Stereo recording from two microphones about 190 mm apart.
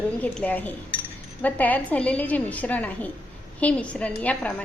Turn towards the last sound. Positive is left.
turn(degrees=5)  # may be behind; listen again after turning